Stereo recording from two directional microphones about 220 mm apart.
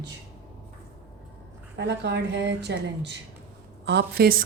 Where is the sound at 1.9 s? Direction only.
50° right (ahead or behind).